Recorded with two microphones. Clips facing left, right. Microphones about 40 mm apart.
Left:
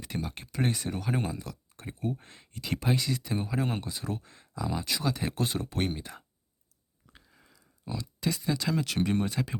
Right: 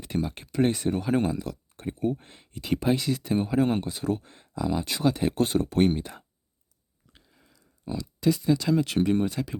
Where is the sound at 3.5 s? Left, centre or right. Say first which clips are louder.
Right 7 dB; right.